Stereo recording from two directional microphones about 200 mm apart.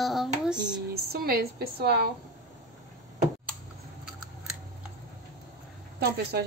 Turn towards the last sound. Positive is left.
turn(degrees=-55)  # may be behind; listen again after turning